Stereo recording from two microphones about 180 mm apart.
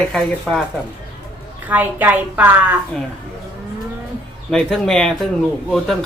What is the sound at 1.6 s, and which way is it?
A woman's voice, 10° right (ahead or behind).